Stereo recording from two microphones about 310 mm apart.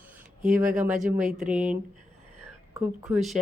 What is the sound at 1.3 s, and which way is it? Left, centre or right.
Speech, centre.